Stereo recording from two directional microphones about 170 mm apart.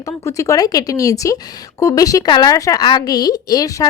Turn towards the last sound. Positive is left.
turn(degrees=20)  # may be behind; listen again after turning